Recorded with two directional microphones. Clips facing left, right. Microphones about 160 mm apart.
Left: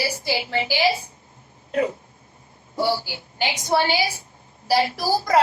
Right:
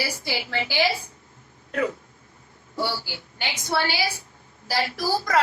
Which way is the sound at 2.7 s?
25° left (ahead or behind).